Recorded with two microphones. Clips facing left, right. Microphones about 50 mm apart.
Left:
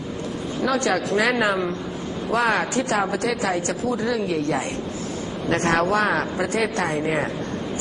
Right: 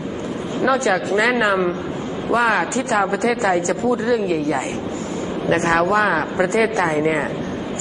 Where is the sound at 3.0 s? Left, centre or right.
Right.